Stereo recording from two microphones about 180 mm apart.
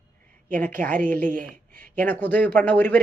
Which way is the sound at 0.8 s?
10° left (ahead or behind).